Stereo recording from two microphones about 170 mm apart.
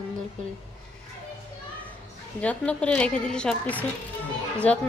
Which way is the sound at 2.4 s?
5° left (ahead or behind).